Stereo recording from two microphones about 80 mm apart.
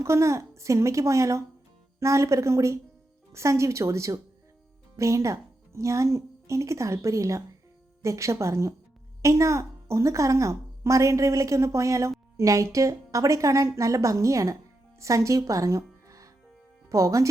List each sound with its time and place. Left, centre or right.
0.0 s a woman's voice: right